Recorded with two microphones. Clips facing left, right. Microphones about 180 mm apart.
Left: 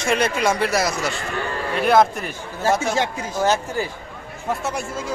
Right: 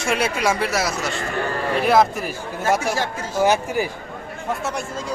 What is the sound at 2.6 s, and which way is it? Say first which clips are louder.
Speech: left 1 dB; 30° left (ahead or behind).